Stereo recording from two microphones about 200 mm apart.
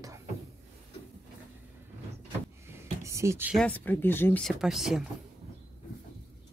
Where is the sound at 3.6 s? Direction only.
10° left (ahead or behind).